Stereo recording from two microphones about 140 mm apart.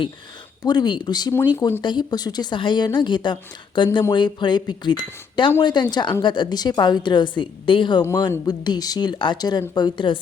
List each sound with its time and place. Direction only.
0.6 s speech: 30° left (ahead or behind)
1.5 s speech: 20° left (ahead or behind)
1.8 s speech: 30° left (ahead or behind)